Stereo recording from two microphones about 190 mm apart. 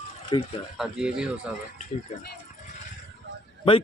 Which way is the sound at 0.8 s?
5° right (ahead or behind).